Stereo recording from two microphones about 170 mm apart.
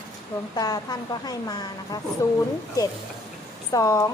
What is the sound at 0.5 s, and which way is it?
A woman's voice, 20° left (ahead or behind).